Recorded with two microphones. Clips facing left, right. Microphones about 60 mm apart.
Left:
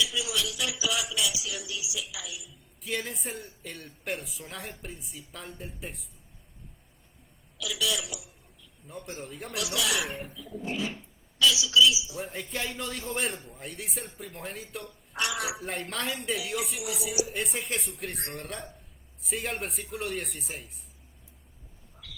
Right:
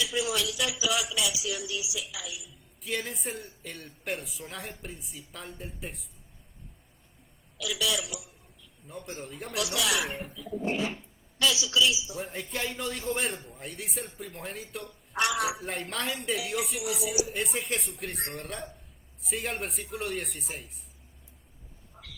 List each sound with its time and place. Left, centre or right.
0.0 s speech: right
2.8 s speech: centre
7.6 s speech: right
8.2 s a sound: right
8.9 s speech: centre
9.5 s speech: right
12.2 s speech: centre
15.1 s a woman's voice: right
15.6 s speech: centre